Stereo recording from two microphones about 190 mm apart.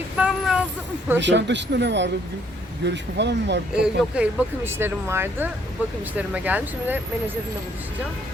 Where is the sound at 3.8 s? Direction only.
10° right (ahead or behind).